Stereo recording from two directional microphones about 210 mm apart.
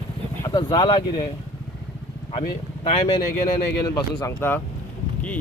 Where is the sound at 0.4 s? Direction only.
20° left (ahead or behind).